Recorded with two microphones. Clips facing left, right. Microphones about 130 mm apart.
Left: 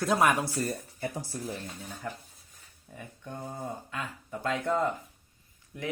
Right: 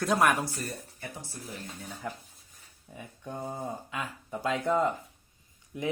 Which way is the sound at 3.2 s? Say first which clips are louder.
Right 2 dB; 20° right (ahead or behind).